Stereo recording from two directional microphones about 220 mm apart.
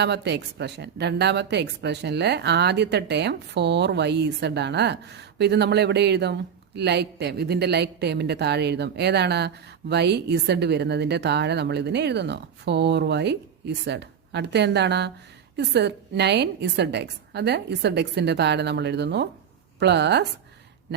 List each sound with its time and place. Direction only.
0.0 s a woman's voice: 50° right (ahead or behind)